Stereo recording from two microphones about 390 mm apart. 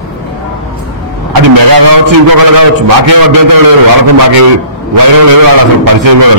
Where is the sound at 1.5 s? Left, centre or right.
Right.